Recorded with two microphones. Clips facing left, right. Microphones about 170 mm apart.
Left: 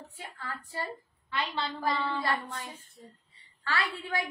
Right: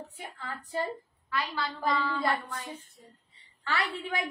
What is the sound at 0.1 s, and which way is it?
Speech, 20° right (ahead or behind).